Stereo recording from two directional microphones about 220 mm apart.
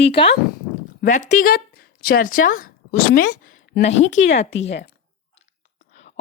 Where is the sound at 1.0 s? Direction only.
35° left (ahead or behind).